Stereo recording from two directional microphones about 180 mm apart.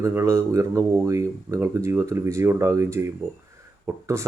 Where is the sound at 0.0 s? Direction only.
15° right (ahead or behind).